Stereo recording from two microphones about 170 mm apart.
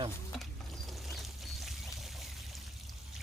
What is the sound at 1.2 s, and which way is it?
Pour, centre (ahead or behind).